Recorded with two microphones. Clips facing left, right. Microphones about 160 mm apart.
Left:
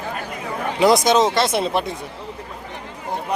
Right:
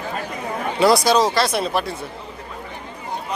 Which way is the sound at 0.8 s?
20° left (ahead or behind).